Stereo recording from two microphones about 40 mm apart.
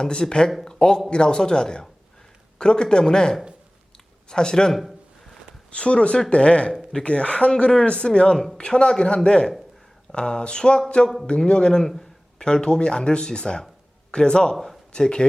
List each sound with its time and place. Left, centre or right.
0.0 s speech: centre
4.7 s speech: centre
5.7 s speech: left
14.5 s speech: centre
14.9 s speech: centre